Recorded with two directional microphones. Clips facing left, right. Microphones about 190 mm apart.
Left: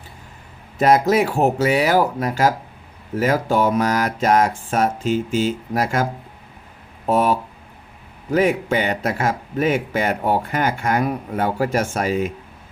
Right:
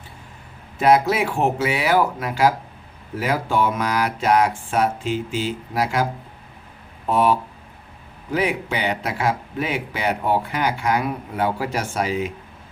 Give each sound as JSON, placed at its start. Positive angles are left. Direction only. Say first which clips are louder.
{"t": 0.8, "sound": "a man's voice", "louder": "left 2 dB", "side_deg": 45}
{"t": 7.1, "sound": "a man's voice", "louder": "left 1 dB", "side_deg": 45}